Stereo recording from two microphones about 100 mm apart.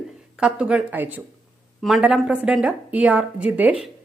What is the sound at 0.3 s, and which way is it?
Speech, 10° right (ahead or behind).